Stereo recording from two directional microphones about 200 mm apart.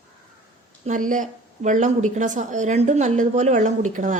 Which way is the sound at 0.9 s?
40° right (ahead or behind).